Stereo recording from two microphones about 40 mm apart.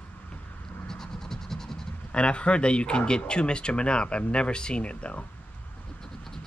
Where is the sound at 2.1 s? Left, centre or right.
Left.